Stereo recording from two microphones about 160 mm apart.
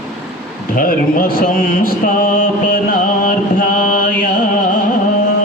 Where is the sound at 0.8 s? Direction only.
60° left (ahead or behind).